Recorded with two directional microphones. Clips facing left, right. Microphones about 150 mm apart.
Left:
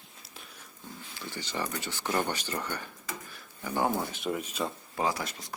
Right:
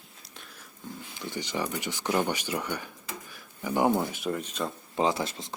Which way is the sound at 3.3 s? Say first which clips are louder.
Right 8 dB; 10° right (ahead or behind).